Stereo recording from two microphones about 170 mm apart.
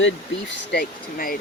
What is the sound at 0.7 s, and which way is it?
Speech, 65° left (ahead or behind).